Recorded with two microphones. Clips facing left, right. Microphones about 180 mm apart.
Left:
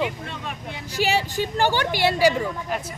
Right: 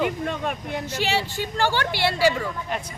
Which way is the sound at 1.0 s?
15° left (ahead or behind).